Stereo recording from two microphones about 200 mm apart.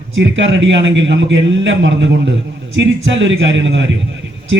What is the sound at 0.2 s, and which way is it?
A man's voice, 65° right (ahead or behind).